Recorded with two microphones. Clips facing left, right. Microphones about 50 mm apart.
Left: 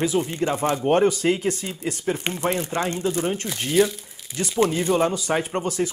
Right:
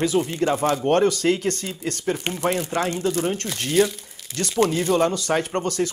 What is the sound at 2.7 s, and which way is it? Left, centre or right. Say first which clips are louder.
Speech: right 1 dB; left.